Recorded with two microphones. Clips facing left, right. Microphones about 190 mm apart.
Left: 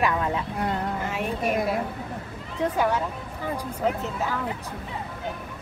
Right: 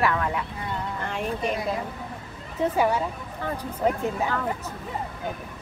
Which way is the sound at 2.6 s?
10° right (ahead or behind).